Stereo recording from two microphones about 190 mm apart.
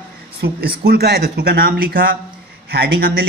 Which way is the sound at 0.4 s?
55° right (ahead or behind).